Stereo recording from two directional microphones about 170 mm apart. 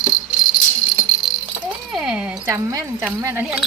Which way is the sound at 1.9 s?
5° right (ahead or behind).